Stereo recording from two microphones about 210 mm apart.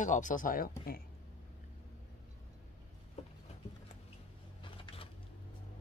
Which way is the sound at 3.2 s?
30° left (ahead or behind).